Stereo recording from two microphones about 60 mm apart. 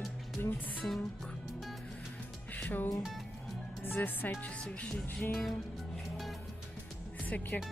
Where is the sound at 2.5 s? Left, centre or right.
Left.